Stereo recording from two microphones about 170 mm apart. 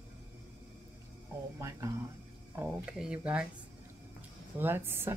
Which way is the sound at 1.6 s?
20° right (ahead or behind).